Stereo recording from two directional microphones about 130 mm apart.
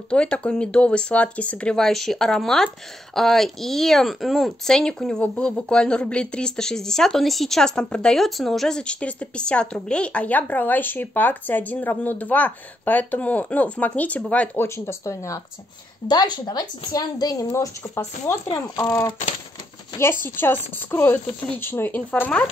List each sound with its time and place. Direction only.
0.1 s speech: 10° left (ahead or behind)
20.0 s speech: 20° left (ahead or behind)